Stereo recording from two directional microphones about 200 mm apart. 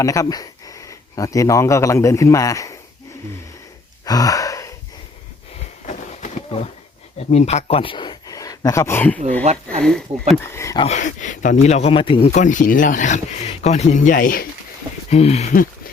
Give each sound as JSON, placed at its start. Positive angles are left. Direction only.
{"t": 0.0, "sound": "speech", "side_deg": 15}
{"t": 4.0, "sound": "gasp", "side_deg": 20}
{"t": 5.9, "sound": "a sound", "side_deg": 35}
{"t": 7.2, "sound": "speech", "side_deg": 35}
{"t": 10.4, "sound": "speech", "side_deg": 15}
{"t": 10.8, "sound": "speech", "side_deg": 40}
{"t": 12.3, "sound": "speech", "side_deg": 40}
{"t": 15.1, "sound": "speech", "side_deg": 30}